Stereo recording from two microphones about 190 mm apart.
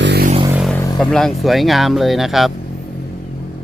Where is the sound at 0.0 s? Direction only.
60° right (ahead or behind).